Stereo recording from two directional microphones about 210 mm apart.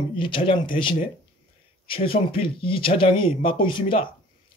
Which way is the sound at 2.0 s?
45° left (ahead or behind).